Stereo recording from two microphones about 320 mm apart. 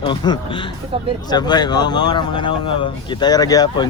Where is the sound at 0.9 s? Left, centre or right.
Centre.